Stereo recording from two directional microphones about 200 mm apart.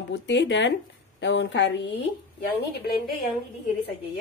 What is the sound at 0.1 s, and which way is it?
Speech, 60° left (ahead or behind).